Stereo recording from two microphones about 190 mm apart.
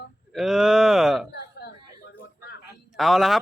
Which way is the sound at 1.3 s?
60° left (ahead or behind).